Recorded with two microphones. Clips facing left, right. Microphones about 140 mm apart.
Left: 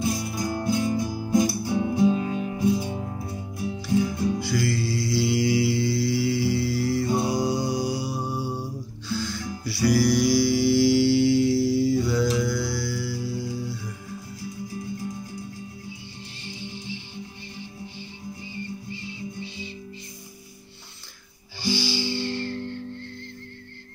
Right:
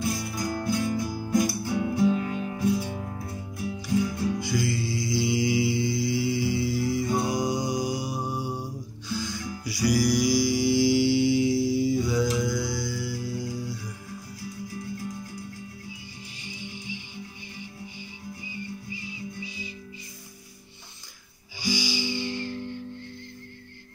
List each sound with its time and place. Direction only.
0.0 s music: 25° left (ahead or behind)
4.4 s music: 20° right (ahead or behind)
16.4 s music: 10° right (ahead or behind)
21.5 s music: 15° right (ahead or behind)